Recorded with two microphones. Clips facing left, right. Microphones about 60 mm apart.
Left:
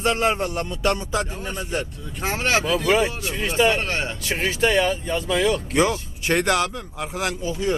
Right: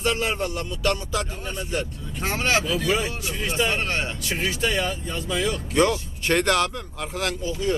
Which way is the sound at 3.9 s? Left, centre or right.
Centre.